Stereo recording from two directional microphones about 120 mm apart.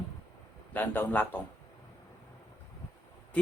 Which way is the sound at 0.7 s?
15° left (ahead or behind).